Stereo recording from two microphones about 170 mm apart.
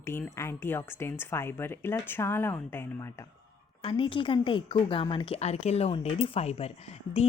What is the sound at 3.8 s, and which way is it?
A woman's voice, 30° left (ahead or behind).